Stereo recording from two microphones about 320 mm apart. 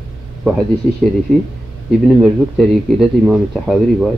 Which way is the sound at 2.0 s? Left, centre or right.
Centre.